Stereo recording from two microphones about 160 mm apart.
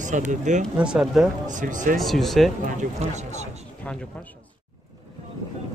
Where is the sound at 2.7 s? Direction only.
50° right (ahead or behind).